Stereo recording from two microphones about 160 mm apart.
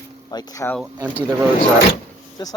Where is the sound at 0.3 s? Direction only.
25° left (ahead or behind).